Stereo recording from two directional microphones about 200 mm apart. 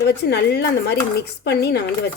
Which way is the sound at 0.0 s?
55° left (ahead or behind).